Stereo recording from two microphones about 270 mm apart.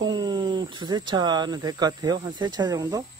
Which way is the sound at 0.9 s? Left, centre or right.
Centre.